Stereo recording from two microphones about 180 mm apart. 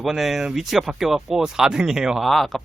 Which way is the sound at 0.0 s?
Centre (ahead or behind).